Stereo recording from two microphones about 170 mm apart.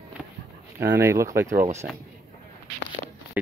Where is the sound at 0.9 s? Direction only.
15° right (ahead or behind).